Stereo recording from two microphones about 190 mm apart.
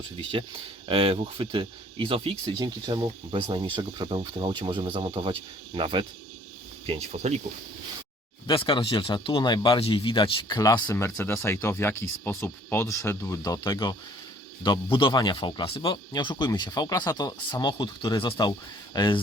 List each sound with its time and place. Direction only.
0.3 s speech: 25° right (ahead or behind)
8.4 s speech: 25° left (ahead or behind)